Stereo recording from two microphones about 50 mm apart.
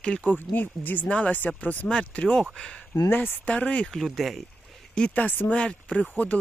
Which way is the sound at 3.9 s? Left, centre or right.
Centre.